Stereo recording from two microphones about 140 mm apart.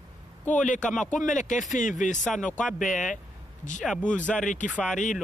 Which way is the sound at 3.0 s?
65° left (ahead or behind).